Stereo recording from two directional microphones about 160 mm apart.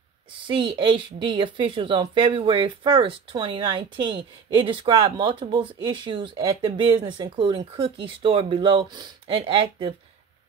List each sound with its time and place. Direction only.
0.5 s a woman's voice: 30° right (ahead or behind)